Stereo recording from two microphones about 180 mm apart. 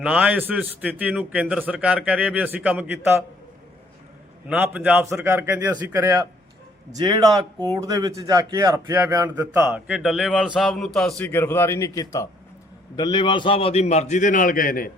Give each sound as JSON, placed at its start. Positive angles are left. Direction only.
{"t": 0.0, "sound": "speech", "side_deg": -5}
{"t": 4.4, "sound": "a man's voice", "side_deg": -10}